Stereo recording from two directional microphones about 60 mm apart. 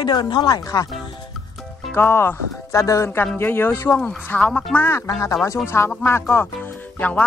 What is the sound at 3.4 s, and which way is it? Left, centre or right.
Speech, left.